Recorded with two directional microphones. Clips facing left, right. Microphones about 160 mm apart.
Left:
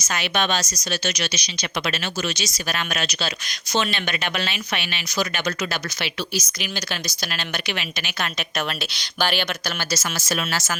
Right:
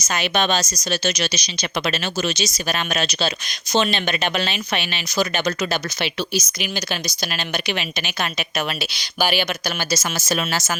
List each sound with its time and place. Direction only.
0.1 s speech: 25° right (ahead or behind)
2.3 s speech: 20° right (ahead or behind)